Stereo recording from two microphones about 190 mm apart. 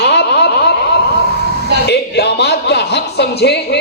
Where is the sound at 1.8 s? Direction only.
60° left (ahead or behind).